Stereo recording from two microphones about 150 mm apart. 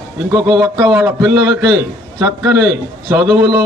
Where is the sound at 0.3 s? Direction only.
20° right (ahead or behind).